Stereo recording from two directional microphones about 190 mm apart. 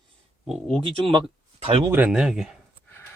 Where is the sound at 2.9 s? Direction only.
10° left (ahead or behind).